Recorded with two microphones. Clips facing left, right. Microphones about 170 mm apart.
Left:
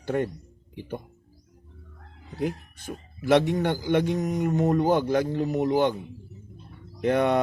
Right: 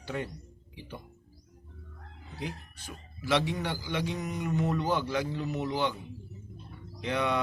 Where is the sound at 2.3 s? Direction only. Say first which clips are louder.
Left 10 dB; 50° left (ahead or behind).